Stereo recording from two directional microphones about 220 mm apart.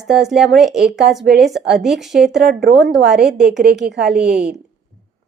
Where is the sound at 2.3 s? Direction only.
50° right (ahead or behind).